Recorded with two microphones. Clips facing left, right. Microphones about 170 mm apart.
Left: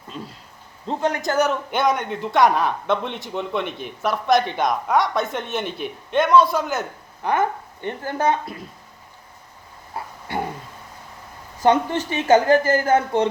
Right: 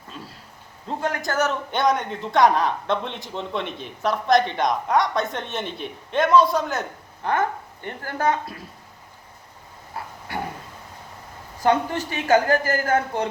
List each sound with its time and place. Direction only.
0.9 s a woman's voice: 20° left (ahead or behind)
1.7 s a man's voice: centre (ahead or behind)
7.3 s a woman's voice: 20° left (ahead or behind)
10.3 s a sound: 25° left (ahead or behind)
11.6 s a woman's voice: 25° left (ahead or behind)